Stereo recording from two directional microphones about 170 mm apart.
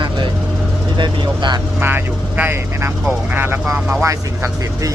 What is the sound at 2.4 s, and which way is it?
Speech, 15° right (ahead or behind).